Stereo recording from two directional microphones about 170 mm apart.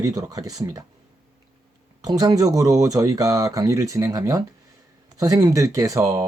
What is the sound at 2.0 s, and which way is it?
Speech, 20° right (ahead or behind).